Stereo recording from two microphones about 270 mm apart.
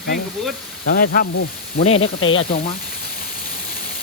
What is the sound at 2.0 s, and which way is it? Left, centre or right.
Speech, left.